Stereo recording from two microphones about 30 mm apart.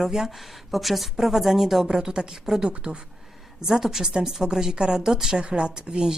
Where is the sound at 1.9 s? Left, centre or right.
Right.